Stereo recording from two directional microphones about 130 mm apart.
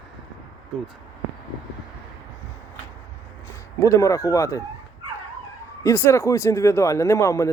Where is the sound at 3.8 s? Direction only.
25° left (ahead or behind).